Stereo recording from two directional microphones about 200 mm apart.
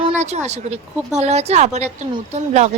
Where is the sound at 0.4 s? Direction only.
35° right (ahead or behind).